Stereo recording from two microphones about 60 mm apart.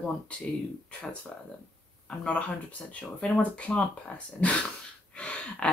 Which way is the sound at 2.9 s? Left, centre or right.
Left.